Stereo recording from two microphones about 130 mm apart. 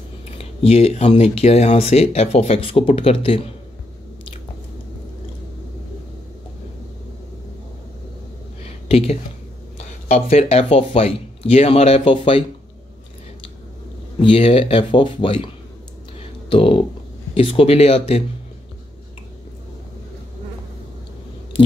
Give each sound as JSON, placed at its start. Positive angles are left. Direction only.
{"t": 0.4, "sound": "speech", "side_deg": 50}
{"t": 8.8, "sound": "speech", "side_deg": 50}
{"t": 14.2, "sound": "speech", "side_deg": 45}
{"t": 16.2, "sound": "a sound", "side_deg": 45}
{"t": 17.3, "sound": "speech", "side_deg": 45}